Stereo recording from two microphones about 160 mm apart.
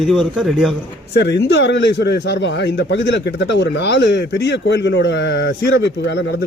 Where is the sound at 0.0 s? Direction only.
Centre (ahead or behind).